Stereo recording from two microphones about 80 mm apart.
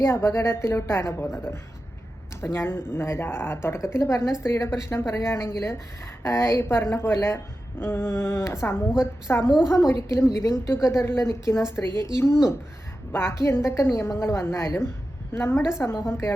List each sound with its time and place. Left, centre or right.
0.0 s a woman's voice: left